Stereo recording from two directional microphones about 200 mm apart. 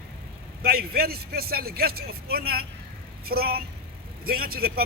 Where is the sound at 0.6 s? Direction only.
50° right (ahead or behind).